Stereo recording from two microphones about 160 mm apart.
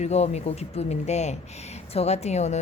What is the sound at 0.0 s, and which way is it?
A woman's voice, 40° left (ahead or behind).